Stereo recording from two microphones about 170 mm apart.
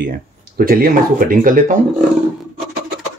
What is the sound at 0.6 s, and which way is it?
Speech, 60° right (ahead or behind).